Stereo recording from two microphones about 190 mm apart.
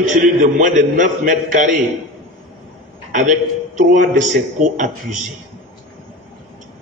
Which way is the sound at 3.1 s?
40° right (ahead or behind).